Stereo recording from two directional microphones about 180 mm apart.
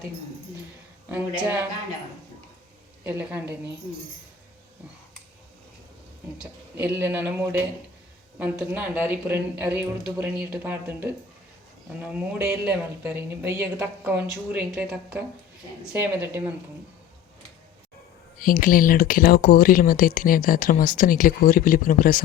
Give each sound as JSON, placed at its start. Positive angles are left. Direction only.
{"t": 3.0, "sound": "speech", "side_deg": -10}
{"t": 6.7, "sound": "speech", "side_deg": -10}
{"t": 18.3, "sound": "speech", "side_deg": 50}